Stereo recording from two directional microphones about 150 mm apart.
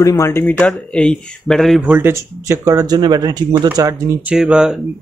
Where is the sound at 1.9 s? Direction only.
15° right (ahead or behind).